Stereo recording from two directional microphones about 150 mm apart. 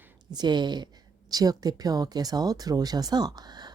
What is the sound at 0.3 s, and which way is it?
Speech, 30° right (ahead or behind).